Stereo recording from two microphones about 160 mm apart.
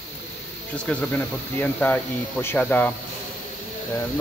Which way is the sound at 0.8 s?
10° left (ahead or behind).